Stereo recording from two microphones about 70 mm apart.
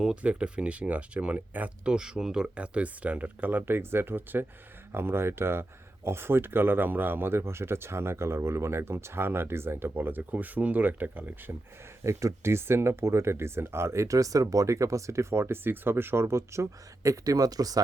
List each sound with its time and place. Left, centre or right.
0.0 s speech: centre
12.0 s speech: right